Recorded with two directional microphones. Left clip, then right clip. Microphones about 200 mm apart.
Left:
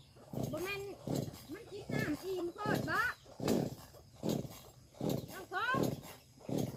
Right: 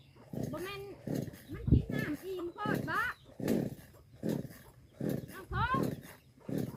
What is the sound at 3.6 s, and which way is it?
Dog, 55° right (ahead or behind).